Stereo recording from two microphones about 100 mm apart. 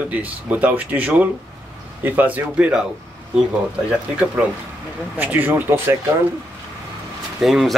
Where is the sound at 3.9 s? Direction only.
10° right (ahead or behind).